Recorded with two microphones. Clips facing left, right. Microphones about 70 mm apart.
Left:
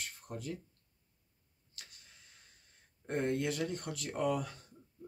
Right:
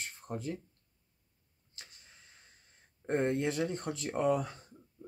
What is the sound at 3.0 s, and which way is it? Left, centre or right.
Speech, right.